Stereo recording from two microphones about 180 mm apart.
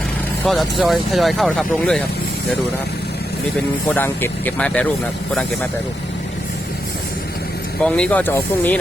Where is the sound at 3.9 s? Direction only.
10° left (ahead or behind).